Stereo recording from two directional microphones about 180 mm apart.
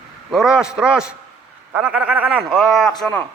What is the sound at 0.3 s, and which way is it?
A man's voice, 5° right (ahead or behind).